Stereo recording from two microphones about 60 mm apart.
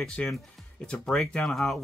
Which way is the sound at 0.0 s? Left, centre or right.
Centre.